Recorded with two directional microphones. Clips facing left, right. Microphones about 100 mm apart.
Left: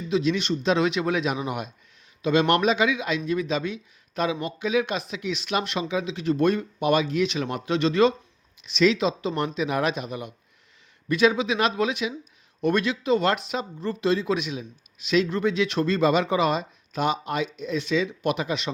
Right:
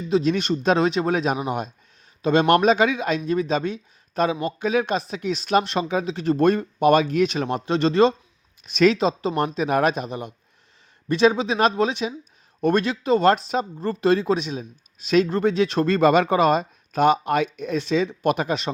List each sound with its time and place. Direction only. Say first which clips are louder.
0.1 s speech: right 3 dB; 45° right (ahead or behind)
8.6 s speech: right 3 dB; 50° right (ahead or behind)
10.1 s speech: right 2 dB; 30° right (ahead or behind); by 14.3 s 50° right (ahead or behind)
14.3 s speech: right 2 dB; 35° right (ahead or behind); by 17.7 s 55° right (ahead or behind)
17.7 s speech: right 3 dB; 40° right (ahead or behind)